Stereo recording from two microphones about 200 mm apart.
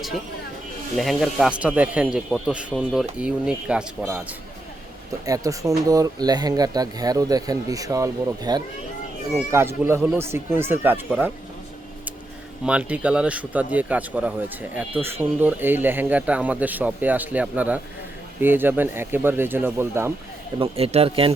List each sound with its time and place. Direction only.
0.9 s a man's voice: centre (ahead or behind)
5.2 s speech: 15° right (ahead or behind)
12.6 s speech: 5° right (ahead or behind)
20.6 s speech: 30° right (ahead or behind)